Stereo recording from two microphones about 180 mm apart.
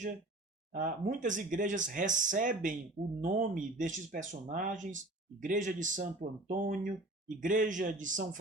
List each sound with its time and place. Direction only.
0.7 s speech: 50° right (ahead or behind)